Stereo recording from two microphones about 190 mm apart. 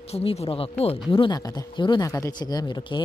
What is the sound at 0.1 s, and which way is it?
Speech, 30° left (ahead or behind).